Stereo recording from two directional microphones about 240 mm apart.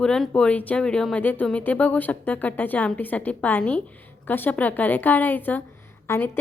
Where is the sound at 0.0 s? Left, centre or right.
Centre.